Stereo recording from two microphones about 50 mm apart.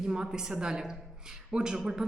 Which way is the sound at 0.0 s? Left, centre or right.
Centre.